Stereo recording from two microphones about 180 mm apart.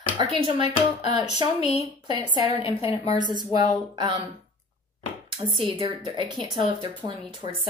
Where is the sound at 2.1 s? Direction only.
25° right (ahead or behind).